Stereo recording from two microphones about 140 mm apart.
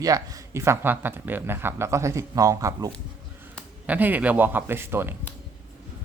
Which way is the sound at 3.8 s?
10° right (ahead or behind).